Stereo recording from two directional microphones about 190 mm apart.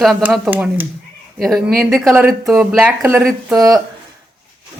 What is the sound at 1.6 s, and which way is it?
Speech, 55° right (ahead or behind).